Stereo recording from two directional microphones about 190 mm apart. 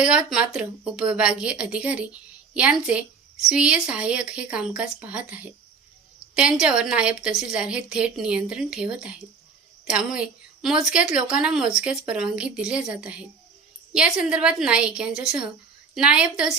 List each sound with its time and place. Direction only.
0.0 s a woman's voice: 5° right (ahead or behind)